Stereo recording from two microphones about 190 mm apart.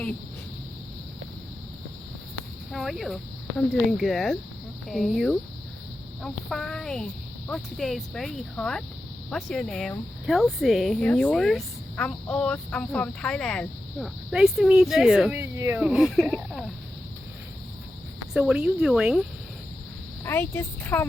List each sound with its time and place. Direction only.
2.7 s speech: centre (ahead or behind)
18.3 s speech: 5° right (ahead or behind)
20.2 s speech: 15° left (ahead or behind)